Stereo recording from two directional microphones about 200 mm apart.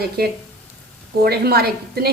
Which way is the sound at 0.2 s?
50° right (ahead or behind).